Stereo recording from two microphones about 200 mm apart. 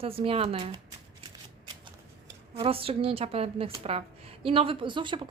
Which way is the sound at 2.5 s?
30° right (ahead or behind).